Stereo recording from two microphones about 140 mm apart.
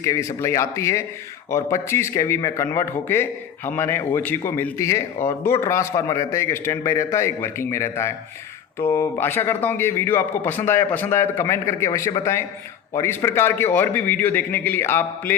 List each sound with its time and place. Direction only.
0.0 s a man's voice: 20° left (ahead or behind)